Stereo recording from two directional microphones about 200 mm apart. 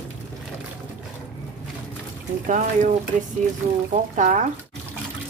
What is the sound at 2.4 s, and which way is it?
Speech, 35° right (ahead or behind).